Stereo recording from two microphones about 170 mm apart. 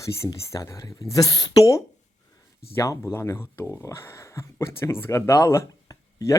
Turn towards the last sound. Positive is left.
turn(degrees=20)  # may be behind; listen again after turning